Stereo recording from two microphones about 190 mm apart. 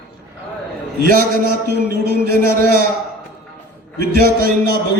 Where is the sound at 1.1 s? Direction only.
50° right (ahead or behind).